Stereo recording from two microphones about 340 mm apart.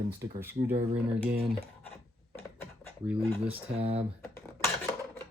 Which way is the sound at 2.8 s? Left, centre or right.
Centre.